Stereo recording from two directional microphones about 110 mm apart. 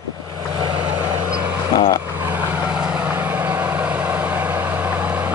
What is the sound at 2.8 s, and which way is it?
Vehicle, 15° right (ahead or behind).